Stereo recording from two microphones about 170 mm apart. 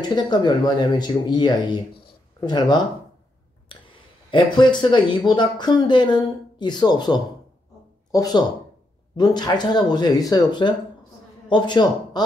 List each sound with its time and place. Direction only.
0.0 s speech: 25° left (ahead or behind)